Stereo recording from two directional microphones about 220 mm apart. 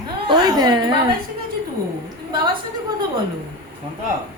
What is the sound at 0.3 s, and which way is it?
Speech, 20° right (ahead or behind).